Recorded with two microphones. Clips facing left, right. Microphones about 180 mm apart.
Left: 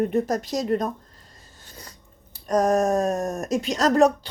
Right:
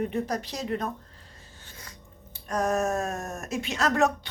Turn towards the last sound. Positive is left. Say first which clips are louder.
# left 6 dB
turn(degrees=35)  # may be behind; listen again after turning